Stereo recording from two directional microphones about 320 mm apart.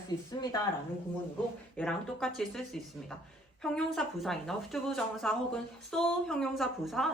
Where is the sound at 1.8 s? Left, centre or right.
Centre.